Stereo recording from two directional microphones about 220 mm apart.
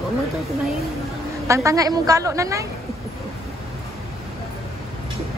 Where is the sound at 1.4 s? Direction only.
15° right (ahead or behind).